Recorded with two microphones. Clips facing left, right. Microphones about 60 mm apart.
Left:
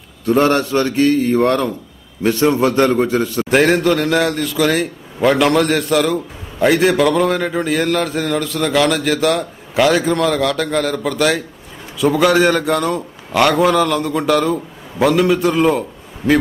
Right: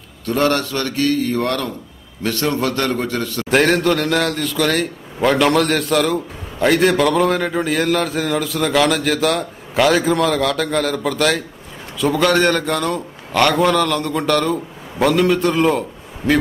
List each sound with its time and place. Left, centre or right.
0.2 s a man's voice: centre